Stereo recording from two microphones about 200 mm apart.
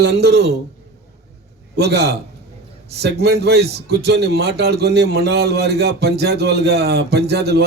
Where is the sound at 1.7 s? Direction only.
55° right (ahead or behind).